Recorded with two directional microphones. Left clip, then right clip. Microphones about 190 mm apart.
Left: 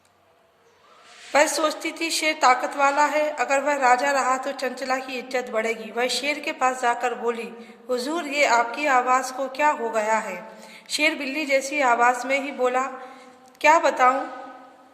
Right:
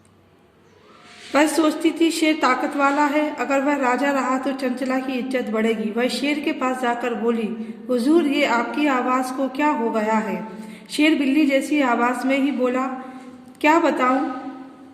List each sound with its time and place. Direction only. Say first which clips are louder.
1.3 s a woman's voice: right 2 dB; 20° left (ahead or behind)